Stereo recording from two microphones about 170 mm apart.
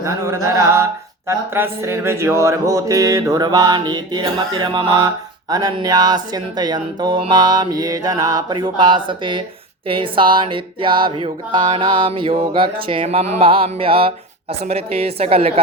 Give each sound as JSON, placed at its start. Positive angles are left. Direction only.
{"t": 0.0, "sound": "mantra", "side_deg": -15}
{"t": 1.3, "sound": "speech", "side_deg": -15}
{"t": 9.9, "sound": "music", "side_deg": -30}